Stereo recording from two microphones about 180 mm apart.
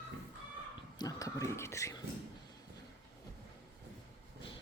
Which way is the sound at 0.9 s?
20° left (ahead or behind).